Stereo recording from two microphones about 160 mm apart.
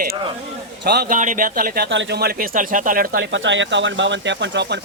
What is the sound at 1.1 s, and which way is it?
Speech, 55° right (ahead or behind).